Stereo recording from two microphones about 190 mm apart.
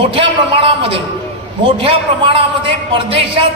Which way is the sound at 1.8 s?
30° right (ahead or behind).